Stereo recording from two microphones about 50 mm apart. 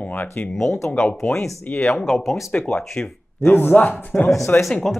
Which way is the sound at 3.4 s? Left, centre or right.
Left.